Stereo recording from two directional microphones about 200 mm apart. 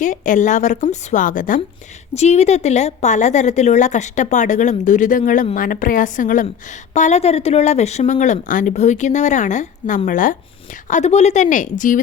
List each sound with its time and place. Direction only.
0.0 s a woman's voice: 40° left (ahead or behind)